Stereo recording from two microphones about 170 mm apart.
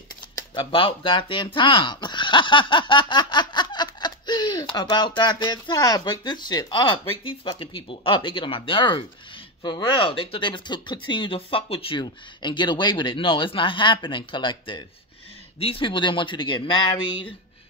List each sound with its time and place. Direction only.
0.4 s speech: 30° left (ahead or behind)